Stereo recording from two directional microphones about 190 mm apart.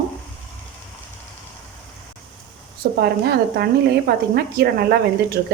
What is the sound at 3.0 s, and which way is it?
Speech, 55° right (ahead or behind).